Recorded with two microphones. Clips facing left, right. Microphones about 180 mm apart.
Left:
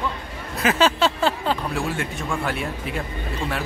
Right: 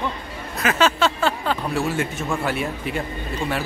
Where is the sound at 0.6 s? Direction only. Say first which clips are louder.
Even; 30° left (ahead or behind).